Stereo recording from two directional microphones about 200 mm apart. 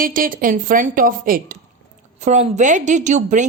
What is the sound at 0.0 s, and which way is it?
A woman's voice, 45° right (ahead or behind).